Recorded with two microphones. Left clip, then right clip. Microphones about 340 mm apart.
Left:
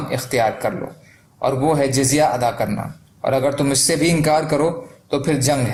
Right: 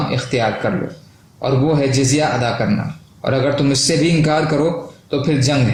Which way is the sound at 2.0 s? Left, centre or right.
Left.